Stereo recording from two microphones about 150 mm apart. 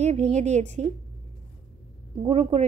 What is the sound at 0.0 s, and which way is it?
Speech, 50° right (ahead or behind).